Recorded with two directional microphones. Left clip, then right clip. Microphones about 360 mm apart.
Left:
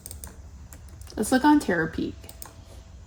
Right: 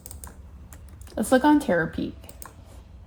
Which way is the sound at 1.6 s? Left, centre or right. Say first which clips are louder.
Right 1 dB; centre.